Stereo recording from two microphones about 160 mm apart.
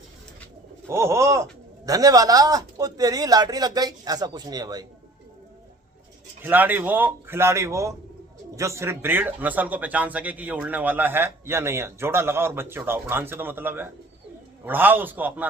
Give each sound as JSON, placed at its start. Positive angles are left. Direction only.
{"t": 0.9, "sound": "a man's voice", "side_deg": -15}
{"t": 6.4, "sound": "speech", "side_deg": -10}